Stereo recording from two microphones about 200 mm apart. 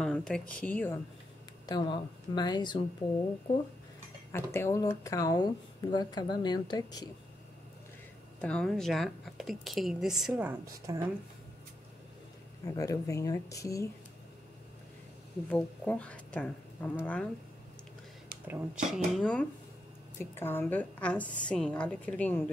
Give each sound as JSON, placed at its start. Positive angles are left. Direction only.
{"t": 0.0, "sound": "speech", "side_deg": 5}
{"t": 1.7, "sound": "speech", "side_deg": 20}
{"t": 4.3, "sound": "speech", "side_deg": 15}
{"t": 8.4, "sound": "speech", "side_deg": 5}
{"t": 12.7, "sound": "a woman's voice", "side_deg": 15}
{"t": 15.5, "sound": "a woman's voice", "side_deg": 10}
{"t": 18.5, "sound": "a woman's voice", "side_deg": -5}